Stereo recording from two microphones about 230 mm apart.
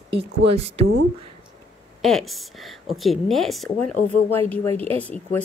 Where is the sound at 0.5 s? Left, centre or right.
Right.